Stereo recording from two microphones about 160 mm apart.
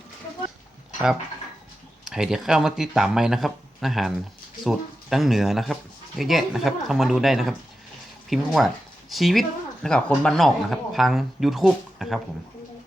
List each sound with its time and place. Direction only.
2.0 s speech: 5° right (ahead or behind)